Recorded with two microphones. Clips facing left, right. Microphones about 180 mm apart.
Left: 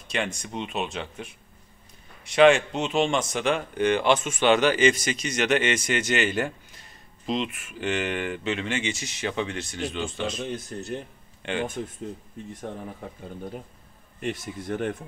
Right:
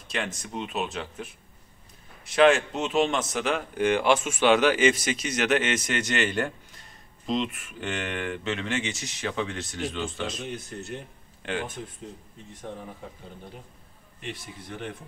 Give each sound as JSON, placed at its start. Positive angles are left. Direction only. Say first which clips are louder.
{"t": 0.1, "sound": "a man's voice", "louder": "left 2 dB", "side_deg": 0}
{"t": 10.4, "sound": "speech", "louder": "left 3 dB", "side_deg": 35}
{"t": 14.2, "sound": "speech", "louder": "left 8 dB", "side_deg": 45}